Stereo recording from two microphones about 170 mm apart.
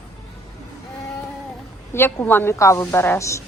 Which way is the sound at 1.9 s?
15° left (ahead or behind).